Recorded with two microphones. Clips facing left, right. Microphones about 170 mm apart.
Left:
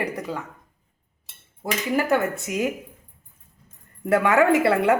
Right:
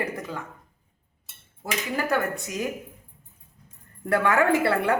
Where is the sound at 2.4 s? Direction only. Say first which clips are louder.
Left 5 dB; 20° left (ahead or behind).